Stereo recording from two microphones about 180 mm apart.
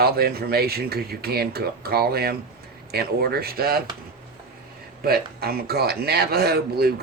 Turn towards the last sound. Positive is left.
turn(degrees=-60)  # may be behind; listen again after turning